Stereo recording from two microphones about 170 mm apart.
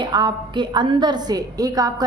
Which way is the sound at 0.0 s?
25° right (ahead or behind).